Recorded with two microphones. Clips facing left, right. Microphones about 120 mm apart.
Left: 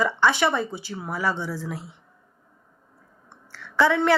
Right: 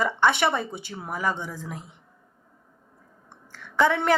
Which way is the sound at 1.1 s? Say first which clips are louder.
Left 2 dB; 45° right (ahead or behind).